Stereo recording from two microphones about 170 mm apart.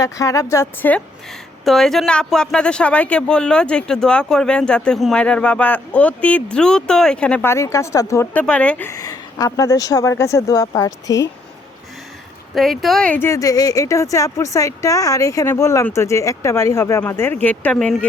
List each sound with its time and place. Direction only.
0.0 s speech: 20° left (ahead or behind)
12.5 s speech: centre (ahead or behind)